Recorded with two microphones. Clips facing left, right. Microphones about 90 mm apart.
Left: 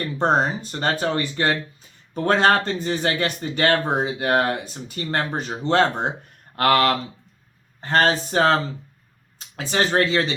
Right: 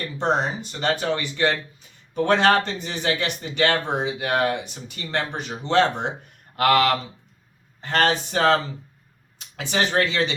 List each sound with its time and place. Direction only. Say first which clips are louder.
0.0 s speech: left 3 dB; 40° left (ahead or behind)
9.6 s speech: left 2 dB; 35° left (ahead or behind)